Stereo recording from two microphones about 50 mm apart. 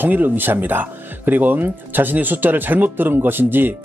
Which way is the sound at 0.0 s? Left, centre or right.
Right.